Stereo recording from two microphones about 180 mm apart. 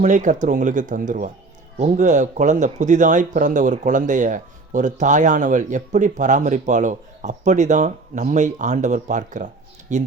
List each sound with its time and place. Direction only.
0.0 s speech: 45° right (ahead or behind)